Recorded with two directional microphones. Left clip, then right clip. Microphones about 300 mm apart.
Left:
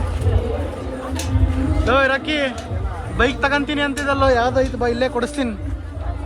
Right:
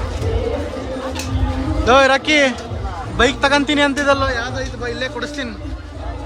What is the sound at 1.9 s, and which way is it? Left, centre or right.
A man's voice, centre.